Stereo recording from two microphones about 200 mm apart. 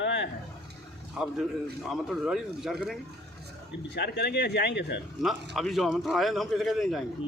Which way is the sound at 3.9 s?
55° left (ahead or behind).